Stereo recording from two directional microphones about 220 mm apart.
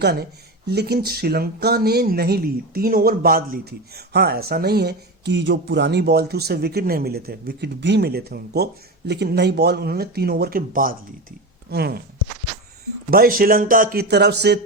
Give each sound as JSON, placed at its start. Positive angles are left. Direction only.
{"t": 0.0, "sound": "speech", "side_deg": -50}
{"t": 13.1, "sound": "speech", "side_deg": -40}